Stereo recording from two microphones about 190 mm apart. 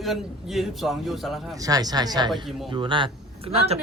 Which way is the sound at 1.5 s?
20° right (ahead or behind).